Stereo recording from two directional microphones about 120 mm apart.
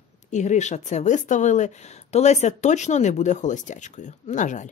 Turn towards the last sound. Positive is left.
turn(degrees=90)